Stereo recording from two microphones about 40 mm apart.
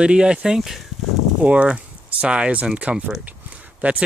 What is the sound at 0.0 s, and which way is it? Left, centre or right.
Speech, right.